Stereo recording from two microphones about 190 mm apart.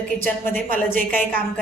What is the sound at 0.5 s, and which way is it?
Speech, 45° right (ahead or behind).